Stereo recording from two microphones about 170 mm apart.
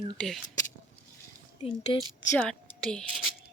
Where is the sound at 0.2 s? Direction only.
Centre (ahead or behind).